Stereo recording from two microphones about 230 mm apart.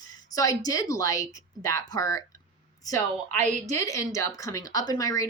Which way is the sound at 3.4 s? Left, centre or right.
Right.